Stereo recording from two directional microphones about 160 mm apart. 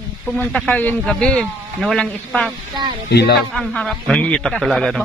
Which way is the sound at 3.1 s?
90° left.